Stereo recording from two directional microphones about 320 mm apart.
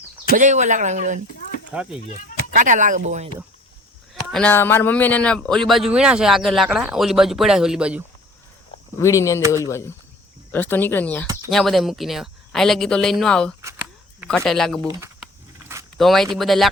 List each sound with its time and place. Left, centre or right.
0.3 s speech: right
1.7 s a man's voice: centre
2.5 s speech: right
4.1 s a man's voice: centre
9.0 s a man's voice: centre
14.8 s speech: centre